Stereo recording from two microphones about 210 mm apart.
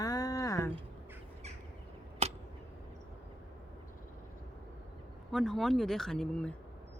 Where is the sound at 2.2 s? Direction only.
30° right (ahead or behind).